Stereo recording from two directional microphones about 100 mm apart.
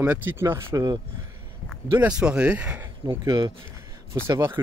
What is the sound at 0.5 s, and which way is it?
Speech, 40° right (ahead or behind).